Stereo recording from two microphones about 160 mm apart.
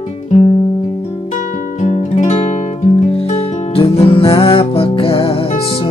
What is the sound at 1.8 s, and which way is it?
Music, 45° left (ahead or behind).